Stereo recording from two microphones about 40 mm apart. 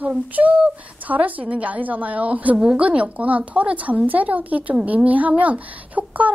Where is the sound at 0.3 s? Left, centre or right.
Right.